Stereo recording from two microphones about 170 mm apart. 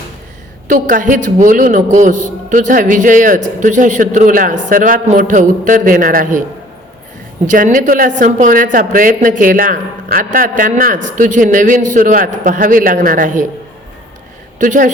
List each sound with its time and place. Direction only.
0.7 s a woman's voice: 50° right (ahead or behind)
7.4 s a woman's voice: 50° right (ahead or behind)
14.6 s a woman's voice: 50° right (ahead or behind)